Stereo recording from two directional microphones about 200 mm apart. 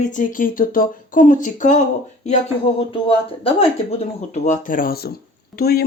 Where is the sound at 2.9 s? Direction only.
30° left (ahead or behind).